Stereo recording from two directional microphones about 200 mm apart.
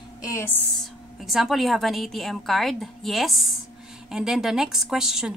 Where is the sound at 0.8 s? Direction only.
Centre (ahead or behind).